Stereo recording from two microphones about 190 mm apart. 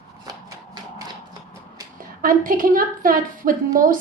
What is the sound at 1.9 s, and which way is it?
A woman's voice, 45° right (ahead or behind).